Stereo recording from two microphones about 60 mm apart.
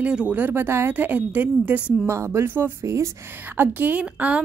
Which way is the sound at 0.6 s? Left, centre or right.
Right.